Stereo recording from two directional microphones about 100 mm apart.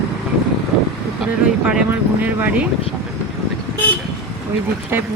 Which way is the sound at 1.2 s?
10° right (ahead or behind).